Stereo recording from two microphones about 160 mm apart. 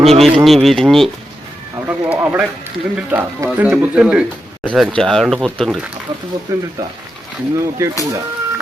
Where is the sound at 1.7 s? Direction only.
10° right (ahead or behind).